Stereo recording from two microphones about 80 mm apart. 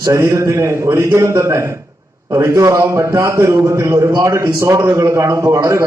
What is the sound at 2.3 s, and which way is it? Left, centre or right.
A man's voice, right.